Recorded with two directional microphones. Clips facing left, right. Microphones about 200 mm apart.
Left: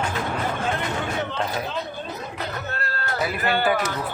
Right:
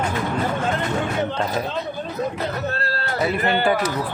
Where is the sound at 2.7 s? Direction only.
35° right (ahead or behind).